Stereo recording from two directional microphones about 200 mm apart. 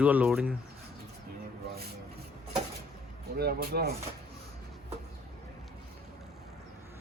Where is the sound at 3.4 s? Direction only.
50° right (ahead or behind).